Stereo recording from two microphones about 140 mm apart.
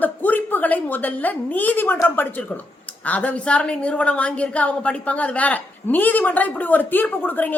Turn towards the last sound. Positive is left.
turn(degrees=15)  # may be behind; listen again after turning